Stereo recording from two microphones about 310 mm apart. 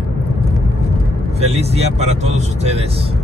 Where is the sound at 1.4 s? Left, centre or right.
Centre.